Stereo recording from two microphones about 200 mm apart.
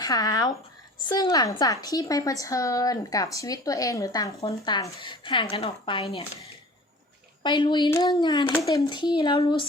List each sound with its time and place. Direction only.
0.0 s a woman's voice: 20° left (ahead or behind)
7.4 s speech: 25° left (ahead or behind)